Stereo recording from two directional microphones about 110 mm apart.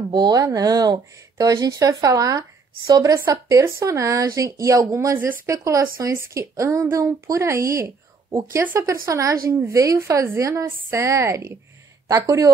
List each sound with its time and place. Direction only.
0.1 s a woman's voice: 35° right (ahead or behind)